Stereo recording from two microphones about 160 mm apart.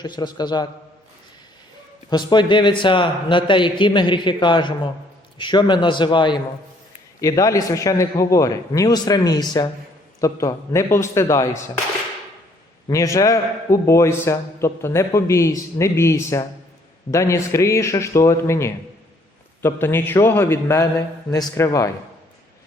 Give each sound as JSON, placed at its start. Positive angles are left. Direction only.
{"t": 0.0, "sound": "a man's voice", "side_deg": 25}
{"t": 2.0, "sound": "a man's voice", "side_deg": 25}
{"t": 12.9, "sound": "a man's voice", "side_deg": 20}